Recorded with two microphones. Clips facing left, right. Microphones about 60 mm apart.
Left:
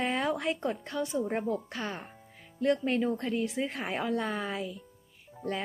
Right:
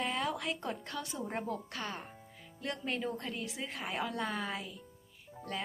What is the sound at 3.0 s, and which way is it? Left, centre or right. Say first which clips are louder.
Speech: left 7 dB; centre.